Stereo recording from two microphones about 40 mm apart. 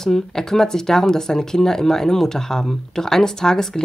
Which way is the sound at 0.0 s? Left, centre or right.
Centre.